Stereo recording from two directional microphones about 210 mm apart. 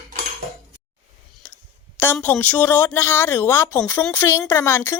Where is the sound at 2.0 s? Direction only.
10° left (ahead or behind).